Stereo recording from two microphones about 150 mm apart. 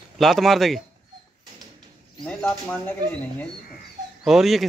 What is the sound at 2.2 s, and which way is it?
Speech, 10° left (ahead or behind).